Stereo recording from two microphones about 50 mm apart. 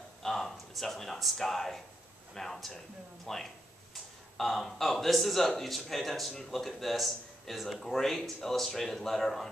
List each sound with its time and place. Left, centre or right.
0.2 s speech: centre